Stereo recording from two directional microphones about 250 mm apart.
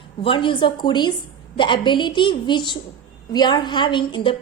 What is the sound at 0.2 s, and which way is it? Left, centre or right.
A woman's voice, left.